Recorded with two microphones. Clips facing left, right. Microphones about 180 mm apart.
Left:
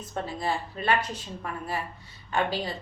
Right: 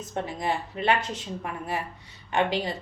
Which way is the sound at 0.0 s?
20° right (ahead or behind).